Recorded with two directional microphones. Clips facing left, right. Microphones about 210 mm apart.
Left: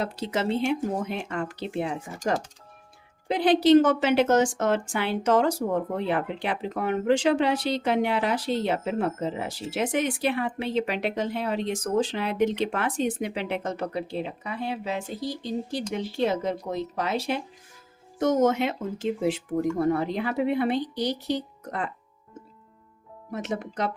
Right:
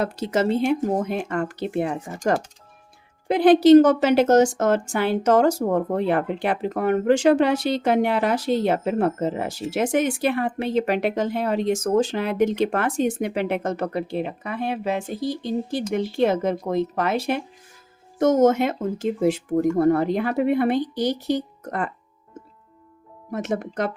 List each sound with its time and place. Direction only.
0.0 s a woman's voice: 45° right (ahead or behind)
23.3 s a woman's voice: 50° right (ahead or behind)